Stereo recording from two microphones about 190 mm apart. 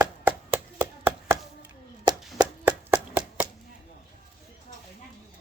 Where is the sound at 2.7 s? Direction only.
10° right (ahead or behind).